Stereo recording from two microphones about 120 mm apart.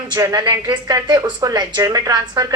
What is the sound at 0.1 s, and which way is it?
Speech, 35° right (ahead or behind).